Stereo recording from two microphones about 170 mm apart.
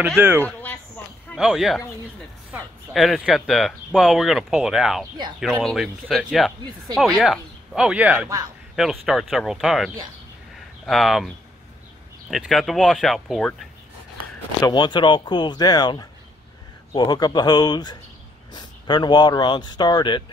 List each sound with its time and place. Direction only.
0.4 s speech: 10° left (ahead or behind)
1.3 s speech: centre (ahead or behind)
2.9 s speech: centre (ahead or behind)
10.9 s speech: centre (ahead or behind)
14.6 s speech: 25° left (ahead or behind)